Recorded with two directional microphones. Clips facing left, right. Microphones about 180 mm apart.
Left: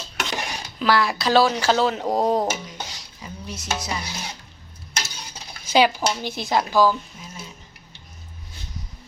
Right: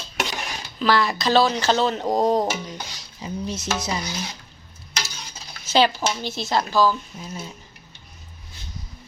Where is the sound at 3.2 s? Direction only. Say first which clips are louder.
Right 7 dB; 25° right (ahead or behind).